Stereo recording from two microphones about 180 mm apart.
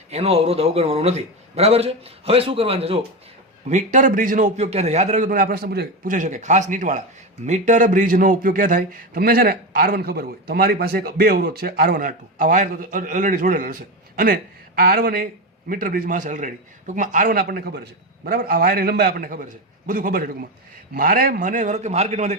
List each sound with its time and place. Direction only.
0.1 s a man's voice: 35° right (ahead or behind)
3.7 s a man's voice: 40° right (ahead or behind)
14.8 s a man's voice: 55° right (ahead or behind); by 22.4 s 35° right (ahead or behind)